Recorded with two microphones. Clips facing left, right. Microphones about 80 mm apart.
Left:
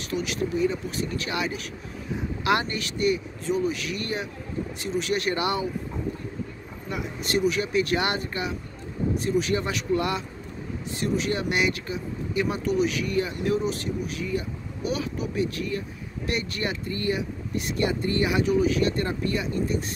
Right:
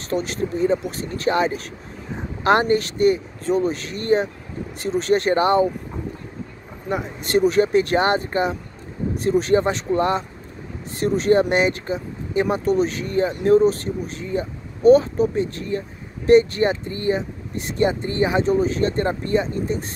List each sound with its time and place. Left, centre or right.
0.1 s speech: right
6.9 s speech: right